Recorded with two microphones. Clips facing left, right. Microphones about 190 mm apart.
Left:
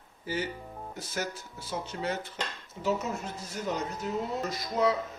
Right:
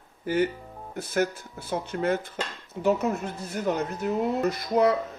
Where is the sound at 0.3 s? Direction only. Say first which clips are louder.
Right 8 dB; 55° right (ahead or behind).